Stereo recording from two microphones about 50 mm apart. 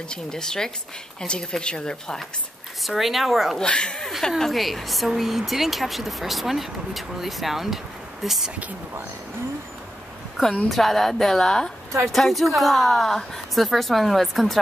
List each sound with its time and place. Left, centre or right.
0.1 s speech: centre
2.8 s speech: centre
3.5 s speech: centre
4.4 s speech: centre
10.3 s speech: centre